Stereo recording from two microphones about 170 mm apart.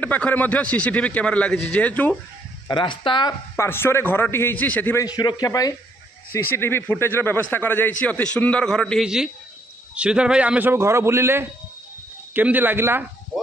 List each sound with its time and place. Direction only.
0.0 s a man's voice: 10° left (ahead or behind)
2.7 s a man's voice: 25° left (ahead or behind)
3.5 s a man's voice: 15° left (ahead or behind)
5.0 s a man's voice: 20° left (ahead or behind); by 13.0 s 10° right (ahead or behind)